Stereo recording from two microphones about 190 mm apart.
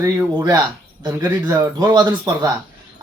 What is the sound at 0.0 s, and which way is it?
Speech, 15° right (ahead or behind).